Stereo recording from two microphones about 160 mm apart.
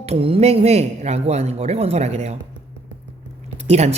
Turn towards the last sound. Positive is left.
turn(degrees=-45)  # may be behind; listen again after turning